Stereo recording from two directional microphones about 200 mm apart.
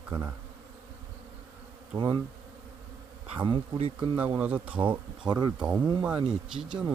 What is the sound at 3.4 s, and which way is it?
Bee, 25° right (ahead or behind).